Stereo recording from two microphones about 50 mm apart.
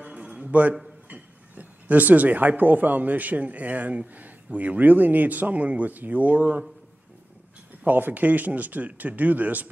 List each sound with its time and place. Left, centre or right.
0.0 s a sound: right
1.0 s speech: right
7.8 s speech: right